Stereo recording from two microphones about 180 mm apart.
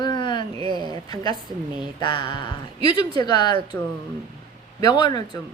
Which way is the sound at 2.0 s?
25° left (ahead or behind).